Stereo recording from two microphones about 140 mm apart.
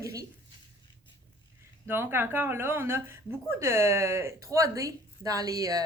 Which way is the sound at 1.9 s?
15° right (ahead or behind).